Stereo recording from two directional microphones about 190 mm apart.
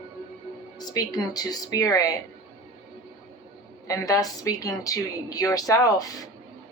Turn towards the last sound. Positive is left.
turn(degrees=20)  # may be behind; listen again after turning